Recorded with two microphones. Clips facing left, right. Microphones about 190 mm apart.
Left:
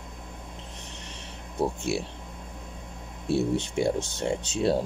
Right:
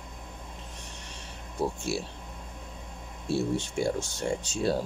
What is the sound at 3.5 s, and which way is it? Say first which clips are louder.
Speech: left 3 dB; 20° left (ahead or behind).